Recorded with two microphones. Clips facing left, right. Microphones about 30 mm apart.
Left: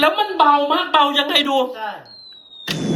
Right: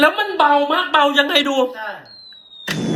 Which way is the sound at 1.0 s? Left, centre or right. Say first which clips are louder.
Right 2 dB; left.